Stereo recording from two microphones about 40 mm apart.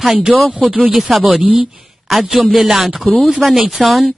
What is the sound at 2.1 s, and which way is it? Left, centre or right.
A man's voice, centre.